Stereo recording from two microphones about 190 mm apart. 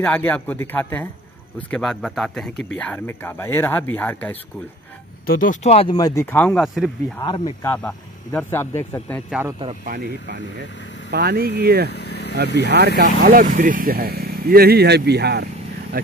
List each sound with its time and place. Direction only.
0.0 s speech: 10° left (ahead or behind)
5.2 s speech: 50° left (ahead or behind); by 5.9 s 30° left (ahead or behind)
5.9 s speech: 20° left (ahead or behind)
6.3 s speech: 5° left (ahead or behind)
9.8 s speech: 55° right (ahead or behind)
11.9 s vehicle: 60° left (ahead or behind)
12.5 s speech: 60° right (ahead or behind)